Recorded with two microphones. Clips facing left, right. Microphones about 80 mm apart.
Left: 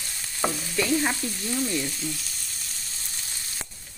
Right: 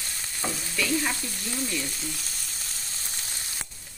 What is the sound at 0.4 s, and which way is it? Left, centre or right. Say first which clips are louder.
Stir: left 6 dB; left.